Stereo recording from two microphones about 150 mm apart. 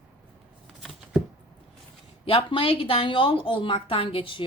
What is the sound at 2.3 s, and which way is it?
Speech, 35° left (ahead or behind).